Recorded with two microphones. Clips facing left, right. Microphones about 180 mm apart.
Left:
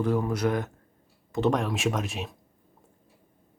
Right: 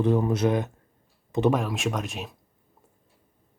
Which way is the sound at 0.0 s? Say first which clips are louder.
Right 3 dB; 20° right (ahead or behind).